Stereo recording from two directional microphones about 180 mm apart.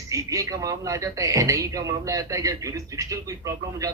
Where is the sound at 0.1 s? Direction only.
15° right (ahead or behind).